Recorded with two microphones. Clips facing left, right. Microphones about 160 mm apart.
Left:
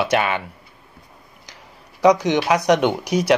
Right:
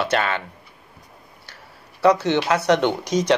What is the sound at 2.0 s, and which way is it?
Speech, 15° left (ahead or behind).